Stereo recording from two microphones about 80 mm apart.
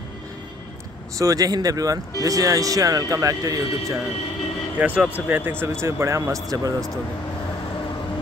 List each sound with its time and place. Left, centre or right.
1.1 s speech: right
4.7 s speech: centre; by 6.9 s right